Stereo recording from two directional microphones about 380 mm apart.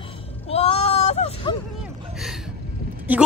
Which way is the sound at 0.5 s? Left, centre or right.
Centre.